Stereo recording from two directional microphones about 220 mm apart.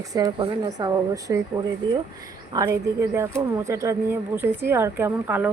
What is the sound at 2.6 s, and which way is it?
A woman's voice, 15° right (ahead or behind).